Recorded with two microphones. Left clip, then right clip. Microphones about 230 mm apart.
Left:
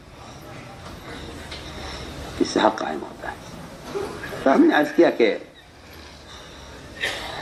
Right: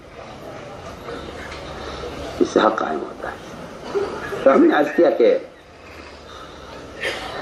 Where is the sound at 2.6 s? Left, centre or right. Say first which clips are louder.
Right 3 dB; left.